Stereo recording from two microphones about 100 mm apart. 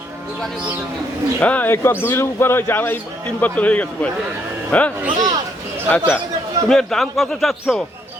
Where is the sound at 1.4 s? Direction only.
15° left (ahead or behind).